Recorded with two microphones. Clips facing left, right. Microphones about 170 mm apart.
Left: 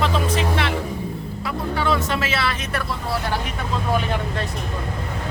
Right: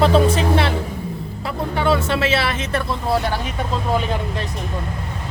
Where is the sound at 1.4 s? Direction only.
30° right (ahead or behind).